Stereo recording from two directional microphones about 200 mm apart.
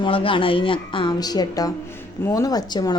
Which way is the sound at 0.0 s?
25° left (ahead or behind).